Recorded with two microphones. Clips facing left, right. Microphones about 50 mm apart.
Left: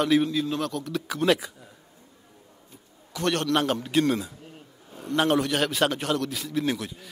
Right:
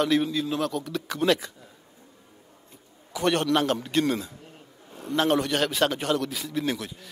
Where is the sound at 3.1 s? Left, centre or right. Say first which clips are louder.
Right 1 dB; centre.